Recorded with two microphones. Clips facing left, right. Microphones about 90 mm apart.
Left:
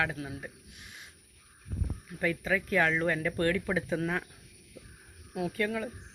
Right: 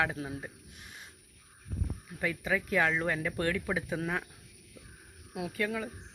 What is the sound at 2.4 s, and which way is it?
Speech, 15° right (ahead or behind).